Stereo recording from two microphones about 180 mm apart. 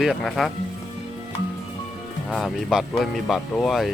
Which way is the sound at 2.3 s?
Centre (ahead or behind).